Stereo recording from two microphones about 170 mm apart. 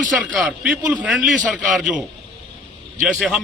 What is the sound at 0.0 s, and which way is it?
A man's voice, centre (ahead or behind).